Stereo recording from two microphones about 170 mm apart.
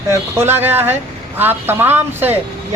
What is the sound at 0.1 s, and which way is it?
A man's voice, 15° right (ahead or behind).